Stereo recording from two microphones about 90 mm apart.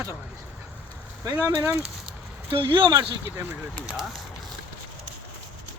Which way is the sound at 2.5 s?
60° right (ahead or behind).